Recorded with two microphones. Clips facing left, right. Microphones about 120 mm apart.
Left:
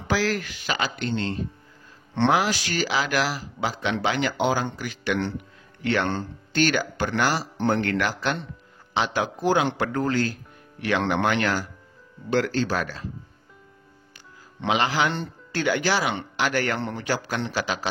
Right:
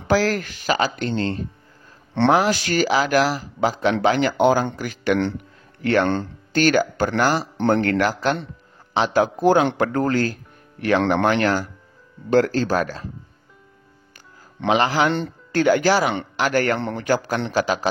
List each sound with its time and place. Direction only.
0.1 s a man's voice: 45° right (ahead or behind)
2.3 s a man's voice: 50° right (ahead or behind)
5.4 s music: 45° right (ahead or behind)
6.5 s a man's voice: 45° right (ahead or behind)
14.7 s a man's voice: 45° right (ahead or behind)